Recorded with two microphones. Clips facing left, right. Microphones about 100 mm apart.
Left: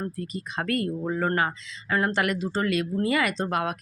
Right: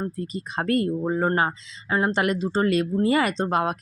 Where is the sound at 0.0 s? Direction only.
30° right (ahead or behind).